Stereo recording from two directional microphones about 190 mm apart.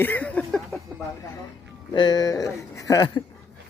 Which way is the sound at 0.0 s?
10° left (ahead or behind).